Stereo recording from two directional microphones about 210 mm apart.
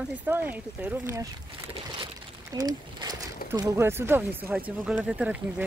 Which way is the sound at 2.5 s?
20° right (ahead or behind).